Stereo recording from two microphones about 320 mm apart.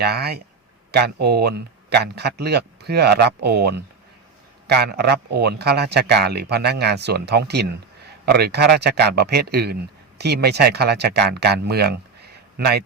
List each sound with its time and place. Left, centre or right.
0.0 s speech: right